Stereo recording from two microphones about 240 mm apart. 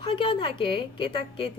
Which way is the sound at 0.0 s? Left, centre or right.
Left.